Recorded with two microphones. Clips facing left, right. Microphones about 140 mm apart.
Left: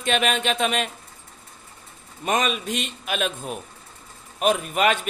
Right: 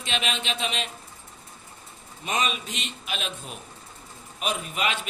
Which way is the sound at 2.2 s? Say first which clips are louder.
Left 5 dB; 50° left (ahead or behind).